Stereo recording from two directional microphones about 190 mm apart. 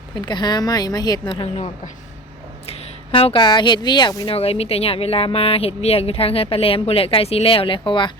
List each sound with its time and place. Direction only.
0.3 s a woman's voice: 20° left (ahead or behind)